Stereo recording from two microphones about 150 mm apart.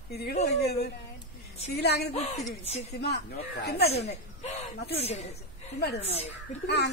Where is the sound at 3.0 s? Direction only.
90° left.